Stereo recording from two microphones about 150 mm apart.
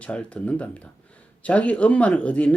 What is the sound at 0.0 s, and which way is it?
Speech, 10° left (ahead or behind).